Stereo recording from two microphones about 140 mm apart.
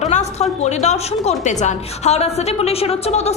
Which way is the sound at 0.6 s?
55° left (ahead or behind).